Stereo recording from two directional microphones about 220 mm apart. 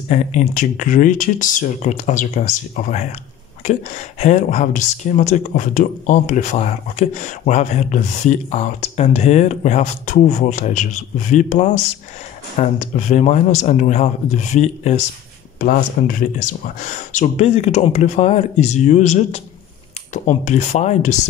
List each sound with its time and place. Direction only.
0.1 s speech: 35° left (ahead or behind)
4.2 s speech: 35° left (ahead or behind)